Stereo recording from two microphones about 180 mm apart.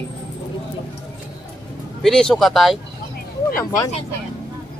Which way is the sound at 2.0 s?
5° left (ahead or behind).